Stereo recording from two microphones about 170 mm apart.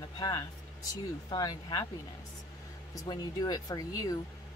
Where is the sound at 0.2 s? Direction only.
20° left (ahead or behind).